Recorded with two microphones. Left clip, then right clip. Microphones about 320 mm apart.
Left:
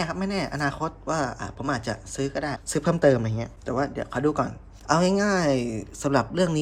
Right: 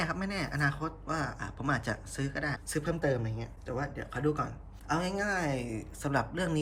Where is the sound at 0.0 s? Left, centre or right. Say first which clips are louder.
Left 6 dB; centre.